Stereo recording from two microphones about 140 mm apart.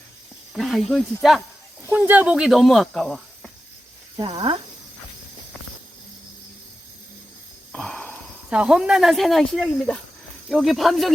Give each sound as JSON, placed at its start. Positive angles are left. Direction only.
{"t": 0.5, "sound": "speech", "side_deg": 0}
{"t": 1.9, "sound": "speech", "side_deg": -10}
{"t": 4.2, "sound": "speech", "side_deg": -35}
{"t": 7.7, "sound": "a sound", "side_deg": 5}
{"t": 8.4, "sound": "speech", "side_deg": -5}